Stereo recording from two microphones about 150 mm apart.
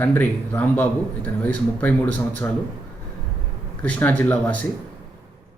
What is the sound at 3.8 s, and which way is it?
Speech, 10° left (ahead or behind).